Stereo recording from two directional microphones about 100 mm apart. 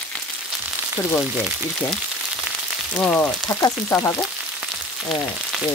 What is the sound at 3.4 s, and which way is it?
Speech, 35° left (ahead or behind).